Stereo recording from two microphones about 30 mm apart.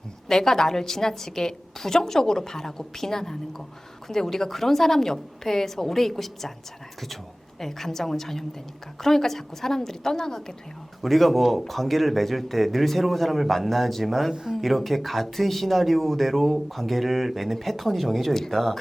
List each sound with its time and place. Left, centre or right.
0.3 s a woman's voice: centre
7.6 s a woman's voice: centre
11.0 s a woman's voice: centre